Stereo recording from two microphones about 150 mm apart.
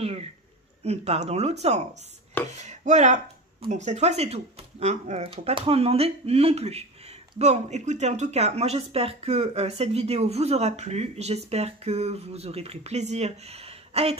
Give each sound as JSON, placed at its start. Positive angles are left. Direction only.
{"t": 0.0, "sound": "speech", "side_deg": -45}